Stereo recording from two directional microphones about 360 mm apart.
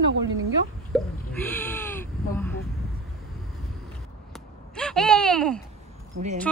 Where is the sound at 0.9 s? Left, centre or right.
Centre.